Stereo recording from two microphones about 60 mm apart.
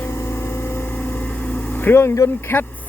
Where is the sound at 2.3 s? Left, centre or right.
Left.